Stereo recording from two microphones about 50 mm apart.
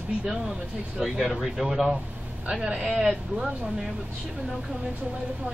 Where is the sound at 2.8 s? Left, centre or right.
Centre.